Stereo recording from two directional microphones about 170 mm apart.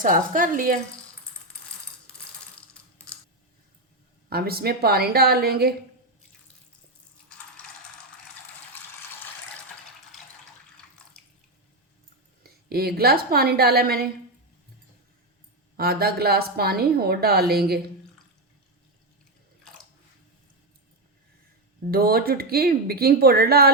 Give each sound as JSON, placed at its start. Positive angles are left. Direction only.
{"t": 0.0, "sound": "speech", "side_deg": -50}
{"t": 4.3, "sound": "a woman's voice", "side_deg": -65}
{"t": 12.4, "sound": "a woman's voice", "side_deg": -65}
{"t": 15.8, "sound": "a woman's voice", "side_deg": -65}
{"t": 21.8, "sound": "a woman's voice", "side_deg": -60}